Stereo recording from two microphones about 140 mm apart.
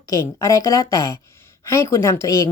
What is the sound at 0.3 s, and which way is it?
Speech, 25° left (ahead or behind).